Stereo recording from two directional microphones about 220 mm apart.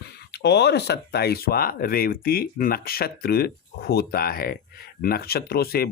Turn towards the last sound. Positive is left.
turn(degrees=45)  # may be behind; listen again after turning